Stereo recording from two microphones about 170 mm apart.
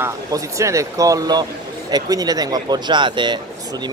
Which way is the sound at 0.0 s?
20° right (ahead or behind).